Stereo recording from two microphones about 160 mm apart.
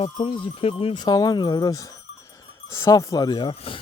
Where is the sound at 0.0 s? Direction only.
30° left (ahead or behind).